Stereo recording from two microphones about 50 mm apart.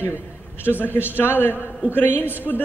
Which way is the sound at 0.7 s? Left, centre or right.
Left.